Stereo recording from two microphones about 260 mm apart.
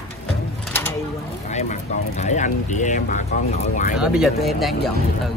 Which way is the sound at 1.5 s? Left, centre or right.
Left.